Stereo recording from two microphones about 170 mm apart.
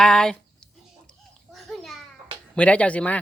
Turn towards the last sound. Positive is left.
turn(degrees=10)  # may be behind; listen again after turning